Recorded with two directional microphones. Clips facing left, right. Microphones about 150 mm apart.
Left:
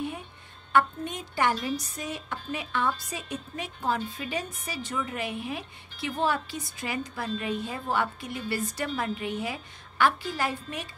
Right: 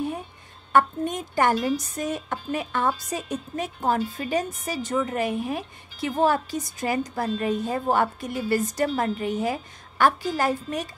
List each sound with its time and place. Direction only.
0.7 s speech: 45° right (ahead or behind)